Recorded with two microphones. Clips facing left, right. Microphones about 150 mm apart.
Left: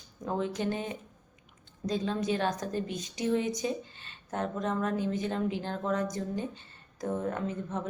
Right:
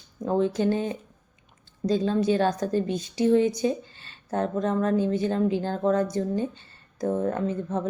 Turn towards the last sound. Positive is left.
turn(degrees=-35)  # may be behind; listen again after turning